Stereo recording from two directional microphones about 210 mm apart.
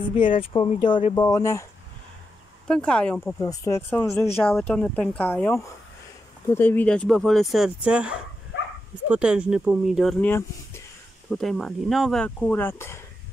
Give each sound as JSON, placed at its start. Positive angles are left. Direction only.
{"t": 0.4, "sound": "speech", "side_deg": 25}
{"t": 2.7, "sound": "speech", "side_deg": 5}